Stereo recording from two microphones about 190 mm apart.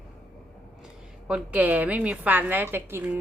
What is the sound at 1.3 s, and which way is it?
A woman's voice, 10° right (ahead or behind).